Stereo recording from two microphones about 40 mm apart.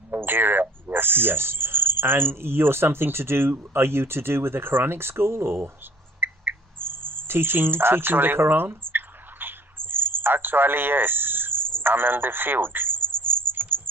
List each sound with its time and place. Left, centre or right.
0.1 s speech: right
6.1 s cricket: right
8.9 s a sound: right